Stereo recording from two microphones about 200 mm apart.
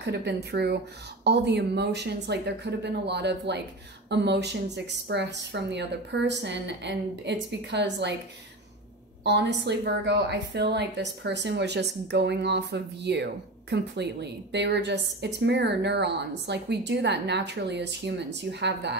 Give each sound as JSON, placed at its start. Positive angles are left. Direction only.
{"t": 0.0, "sound": "a woman's voice", "side_deg": -60}
{"t": 9.2, "sound": "a woman's voice", "side_deg": -60}